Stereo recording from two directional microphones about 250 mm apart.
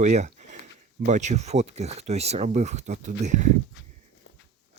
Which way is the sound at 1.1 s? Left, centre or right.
Right.